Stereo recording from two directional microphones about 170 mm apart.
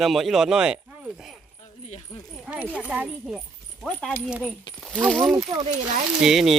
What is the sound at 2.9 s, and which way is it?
Speech, 5° right (ahead or behind).